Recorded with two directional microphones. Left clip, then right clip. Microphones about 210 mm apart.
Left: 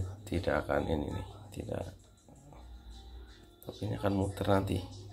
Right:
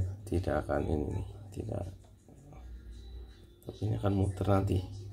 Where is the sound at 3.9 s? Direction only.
30° left (ahead or behind).